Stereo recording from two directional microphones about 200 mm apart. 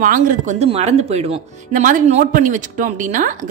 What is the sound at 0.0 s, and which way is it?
A woman's voice, 40° right (ahead or behind).